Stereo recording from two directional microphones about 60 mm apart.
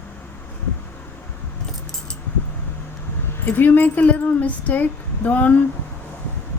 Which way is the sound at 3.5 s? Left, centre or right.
Left.